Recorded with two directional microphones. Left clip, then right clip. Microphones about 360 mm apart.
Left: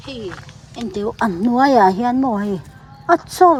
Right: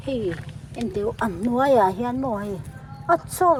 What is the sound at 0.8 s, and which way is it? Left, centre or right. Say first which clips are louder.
Speech: left 4 dB; centre.